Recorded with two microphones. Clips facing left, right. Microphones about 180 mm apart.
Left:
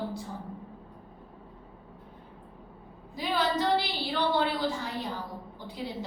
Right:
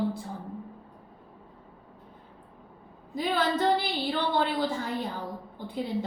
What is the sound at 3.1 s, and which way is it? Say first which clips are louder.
A woman's voice: right 2 dB; 50° right (ahead or behind).